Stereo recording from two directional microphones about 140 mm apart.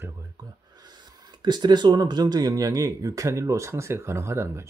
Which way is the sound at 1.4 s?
30° right (ahead or behind).